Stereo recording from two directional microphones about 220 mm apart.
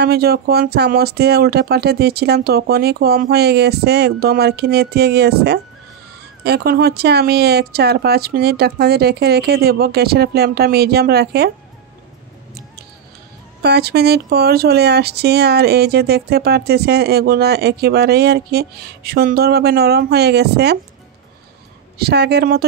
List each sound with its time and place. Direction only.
0.0 s speech: 45° right (ahead or behind)
13.6 s speech: 45° right (ahead or behind)
21.9 s speech: 45° right (ahead or behind)